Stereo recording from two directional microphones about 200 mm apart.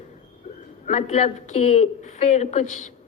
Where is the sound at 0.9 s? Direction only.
35° left (ahead or behind).